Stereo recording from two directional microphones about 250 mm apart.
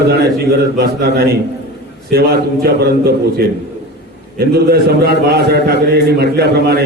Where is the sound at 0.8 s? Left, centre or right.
Right.